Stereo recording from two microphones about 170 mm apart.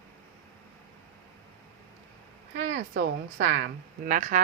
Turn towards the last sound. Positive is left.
turn(degrees=-50)  # may be behind; listen again after turning